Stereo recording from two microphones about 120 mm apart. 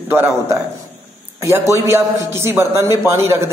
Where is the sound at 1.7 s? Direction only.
20° right (ahead or behind).